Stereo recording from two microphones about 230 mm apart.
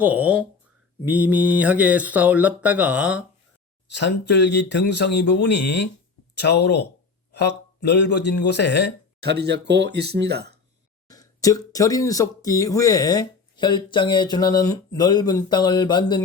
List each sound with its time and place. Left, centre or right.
0.0 s speech: centre
3.9 s speech: left
9.2 s speech: right
11.1 s speech: centre